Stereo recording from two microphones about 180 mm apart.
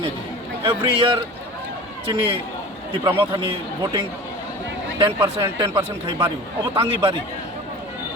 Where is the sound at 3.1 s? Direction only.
30° right (ahead or behind).